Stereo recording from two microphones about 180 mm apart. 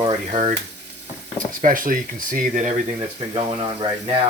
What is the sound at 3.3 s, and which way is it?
Speech, 30° right (ahead or behind).